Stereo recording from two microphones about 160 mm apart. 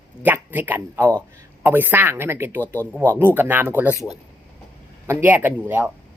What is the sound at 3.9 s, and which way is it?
Speech, 20° left (ahead or behind).